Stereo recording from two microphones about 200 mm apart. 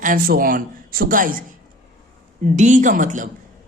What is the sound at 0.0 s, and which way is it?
A man's voice, 45° right (ahead or behind).